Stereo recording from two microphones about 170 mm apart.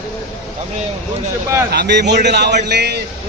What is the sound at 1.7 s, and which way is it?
A man's voice, 90° right.